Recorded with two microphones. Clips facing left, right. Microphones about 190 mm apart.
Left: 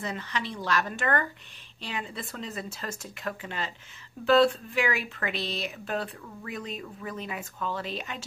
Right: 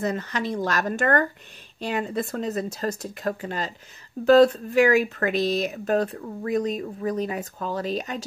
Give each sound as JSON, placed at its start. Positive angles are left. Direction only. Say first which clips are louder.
{"t": 0.0, "sound": "speech", "louder": "right 7 dB", "side_deg": -45}